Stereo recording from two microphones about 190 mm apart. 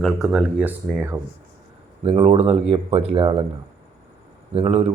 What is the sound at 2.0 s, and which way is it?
Speech, 30° right (ahead or behind).